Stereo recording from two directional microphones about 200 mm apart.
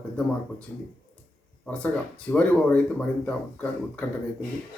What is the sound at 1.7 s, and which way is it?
Speech, 5° left (ahead or behind).